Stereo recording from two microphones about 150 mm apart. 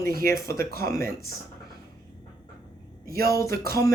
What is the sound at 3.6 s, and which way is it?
Speech, 20° left (ahead or behind).